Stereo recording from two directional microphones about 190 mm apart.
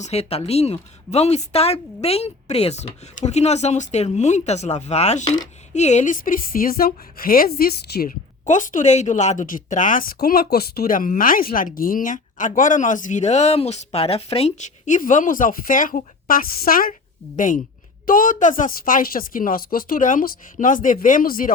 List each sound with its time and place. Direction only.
0.0 s a woman's voice: 35° left (ahead or behind); by 8.1 s 55° left (ahead or behind)
8.4 s a woman's voice: 40° left (ahead or behind)